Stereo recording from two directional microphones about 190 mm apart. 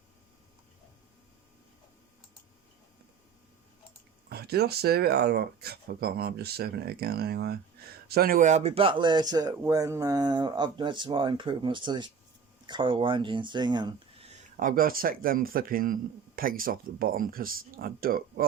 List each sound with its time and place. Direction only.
4.3 s speech: 55° right (ahead or behind); by 14.3 s 20° right (ahead or behind)
14.3 s speech: 45° right (ahead or behind)